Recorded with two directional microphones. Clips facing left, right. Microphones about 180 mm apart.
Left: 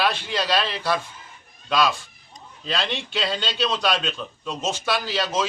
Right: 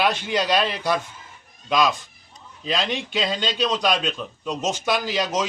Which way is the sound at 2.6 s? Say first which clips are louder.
Right 2 dB; 15° right (ahead or behind).